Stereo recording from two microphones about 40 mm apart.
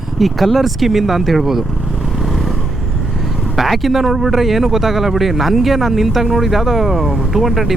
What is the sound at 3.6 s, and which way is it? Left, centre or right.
Speech, centre.